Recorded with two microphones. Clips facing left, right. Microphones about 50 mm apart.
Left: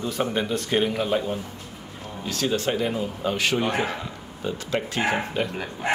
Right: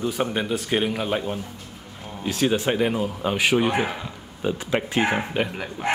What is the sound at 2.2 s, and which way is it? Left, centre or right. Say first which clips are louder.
Speech: right 3 dB; centre.